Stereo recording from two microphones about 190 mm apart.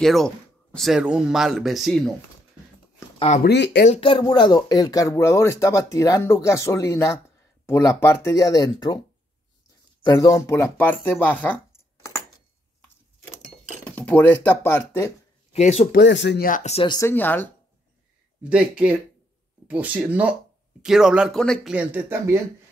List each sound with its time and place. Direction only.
0.0 s speech: centre (ahead or behind)
3.4 s speech: 60° left (ahead or behind)
3.8 s speech: 30° left (ahead or behind)
10.0 s speech: 15° left (ahead or behind)
13.8 s speech: 10° left (ahead or behind)
15.5 s speech: 35° left (ahead or behind)
16.0 s speech: 70° left (ahead or behind)
16.4 s speech: 40° left (ahead or behind)
16.8 s speech: 20° left (ahead or behind)
17.1 s speech: 10° left (ahead or behind)
18.4 s speech: 5° right (ahead or behind)
21.7 s speech: 10° right (ahead or behind)